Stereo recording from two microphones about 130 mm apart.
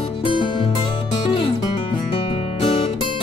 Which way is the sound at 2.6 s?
45° left (ahead or behind).